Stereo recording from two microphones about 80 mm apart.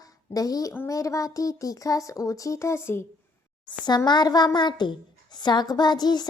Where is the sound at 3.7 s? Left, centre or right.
Left.